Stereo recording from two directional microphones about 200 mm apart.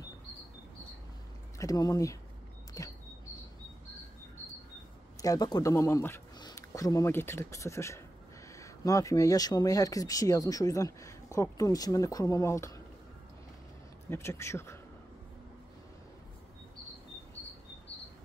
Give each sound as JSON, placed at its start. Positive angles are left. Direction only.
{"t": 1.6, "sound": "speech", "side_deg": 15}
{"t": 2.8, "sound": "a sound", "side_deg": 15}
{"t": 5.2, "sound": "speech", "side_deg": 20}
{"t": 14.0, "sound": "speech", "side_deg": 10}